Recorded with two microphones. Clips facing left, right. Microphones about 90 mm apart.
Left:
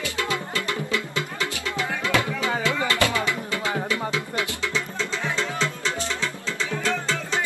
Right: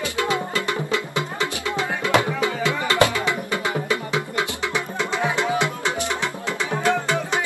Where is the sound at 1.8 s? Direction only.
20° right (ahead or behind).